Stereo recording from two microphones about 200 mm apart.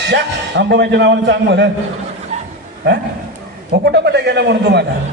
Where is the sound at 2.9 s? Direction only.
60° right (ahead or behind).